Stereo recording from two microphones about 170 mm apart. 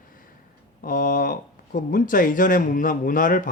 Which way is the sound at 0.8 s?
55° left (ahead or behind).